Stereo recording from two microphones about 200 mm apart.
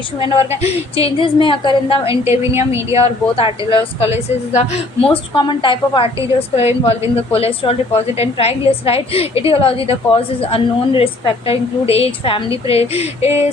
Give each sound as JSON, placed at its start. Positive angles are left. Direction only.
{"t": 0.2, "sound": "a woman's voice", "side_deg": 30}
{"t": 2.3, "sound": "a woman's voice", "side_deg": -10}
{"t": 2.9, "sound": "a woman's voice", "side_deg": 30}